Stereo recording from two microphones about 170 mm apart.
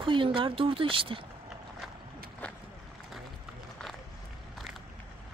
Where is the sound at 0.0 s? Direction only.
30° right (ahead or behind).